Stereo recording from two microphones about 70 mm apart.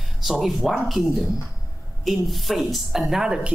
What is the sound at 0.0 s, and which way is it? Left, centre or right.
A woman's voice, centre.